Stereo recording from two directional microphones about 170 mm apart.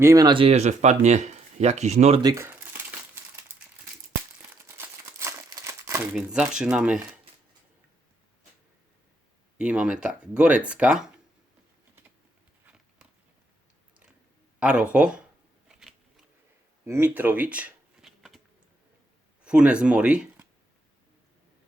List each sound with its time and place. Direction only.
0.0 s speech: 20° right (ahead or behind); by 2.2 s 40° right (ahead or behind)
2.2 s crumpling: 15° right (ahead or behind)
4.8 s crumpling: 15° right (ahead or behind)
6.1 s speech: 5° right (ahead or behind)
9.6 s speech: 5° right (ahead or behind)
12.6 s a sound: 5° right (ahead or behind)
14.6 s speech: 5° right (ahead or behind)
15.7 s scissors: centre (ahead or behind)
16.8 s a sound: 15° right (ahead or behind)
19.5 s speech: 5° right (ahead or behind)